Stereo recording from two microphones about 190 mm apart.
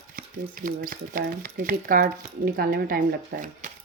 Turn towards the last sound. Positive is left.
turn(degrees=-45)  # may be behind; listen again after turning